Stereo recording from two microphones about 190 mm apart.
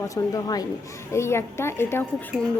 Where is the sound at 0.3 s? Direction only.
20° left (ahead or behind).